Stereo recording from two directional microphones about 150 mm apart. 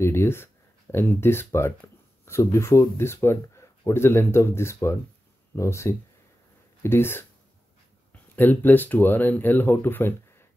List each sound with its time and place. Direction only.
0.0 s speech: 15° left (ahead or behind)
8.4 s speech: 10° left (ahead or behind)